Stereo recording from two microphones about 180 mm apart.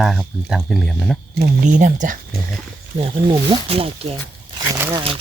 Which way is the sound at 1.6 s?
45° right (ahead or behind).